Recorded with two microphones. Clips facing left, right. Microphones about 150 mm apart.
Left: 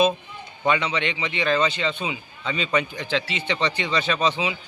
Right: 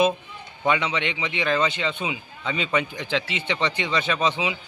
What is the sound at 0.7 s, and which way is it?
A man's voice, 15° right (ahead or behind).